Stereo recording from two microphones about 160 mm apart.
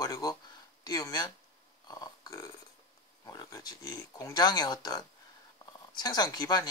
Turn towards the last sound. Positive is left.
turn(degrees=25)  # may be behind; listen again after turning